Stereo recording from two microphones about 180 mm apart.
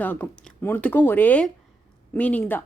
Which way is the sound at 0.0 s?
10° left (ahead or behind).